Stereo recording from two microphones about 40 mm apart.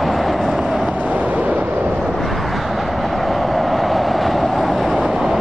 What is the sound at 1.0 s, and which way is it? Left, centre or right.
Vehicle, right.